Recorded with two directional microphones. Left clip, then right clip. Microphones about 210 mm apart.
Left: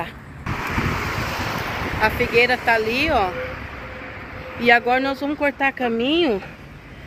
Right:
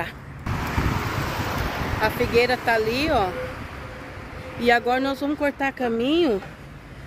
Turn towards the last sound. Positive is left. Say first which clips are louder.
# left 2 dB
turn(degrees=-10)  # may be behind; listen again after turning